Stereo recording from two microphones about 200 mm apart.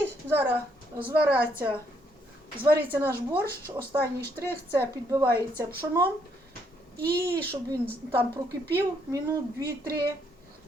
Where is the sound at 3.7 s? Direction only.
10° right (ahead or behind).